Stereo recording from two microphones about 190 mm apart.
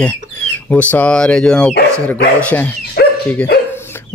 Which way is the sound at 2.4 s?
10° left (ahead or behind).